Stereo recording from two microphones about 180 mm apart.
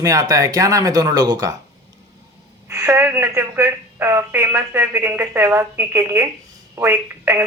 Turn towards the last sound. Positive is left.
turn(degrees=-15)  # may be behind; listen again after turning